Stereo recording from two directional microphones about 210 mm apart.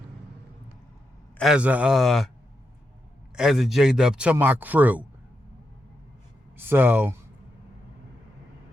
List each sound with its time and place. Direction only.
1.4 s speech: 5° right (ahead or behind)
3.3 s speech: centre (ahead or behind)
6.6 s speech: 10° right (ahead or behind)